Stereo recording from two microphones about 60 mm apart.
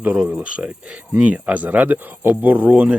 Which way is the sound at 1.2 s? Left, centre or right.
Right.